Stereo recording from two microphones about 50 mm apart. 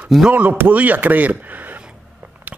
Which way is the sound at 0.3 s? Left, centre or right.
Right.